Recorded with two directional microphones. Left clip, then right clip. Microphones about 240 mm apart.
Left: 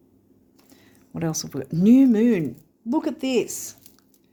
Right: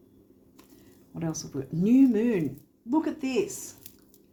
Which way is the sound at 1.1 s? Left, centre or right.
Left.